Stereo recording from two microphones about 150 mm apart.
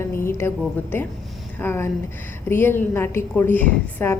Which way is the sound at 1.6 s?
15° left (ahead or behind).